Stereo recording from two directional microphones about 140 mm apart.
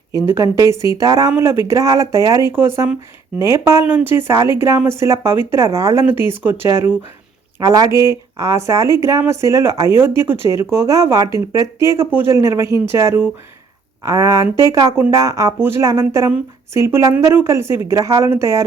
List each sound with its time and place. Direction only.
0.1 s speech: 20° right (ahead or behind)